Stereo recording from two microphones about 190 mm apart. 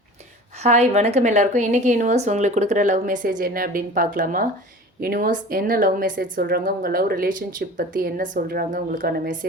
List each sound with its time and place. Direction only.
0.6 s a woman's voice: 35° right (ahead or behind)